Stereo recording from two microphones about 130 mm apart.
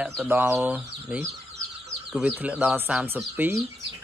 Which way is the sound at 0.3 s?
15° right (ahead or behind).